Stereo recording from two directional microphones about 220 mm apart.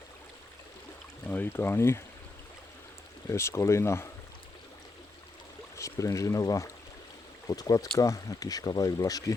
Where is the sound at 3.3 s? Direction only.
10° left (ahead or behind).